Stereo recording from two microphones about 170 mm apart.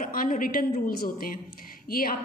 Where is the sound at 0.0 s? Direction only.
55° left (ahead or behind).